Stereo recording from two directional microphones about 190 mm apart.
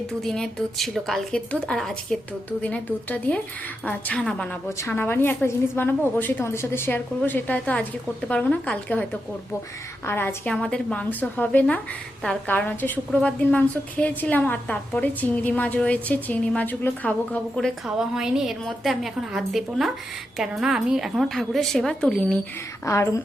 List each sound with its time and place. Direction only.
0.1 s a woman's voice: centre (ahead or behind)
10.1 s a woman's voice: 10° left (ahead or behind)
17.8 s a woman's voice: 5° right (ahead or behind)
22.9 s a woman's voice: 15° left (ahead or behind)